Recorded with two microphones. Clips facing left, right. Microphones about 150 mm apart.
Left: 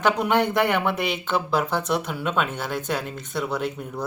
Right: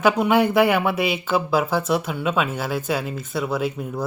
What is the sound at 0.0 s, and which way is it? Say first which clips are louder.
Speech: right 3 dB; 5° right (ahead or behind).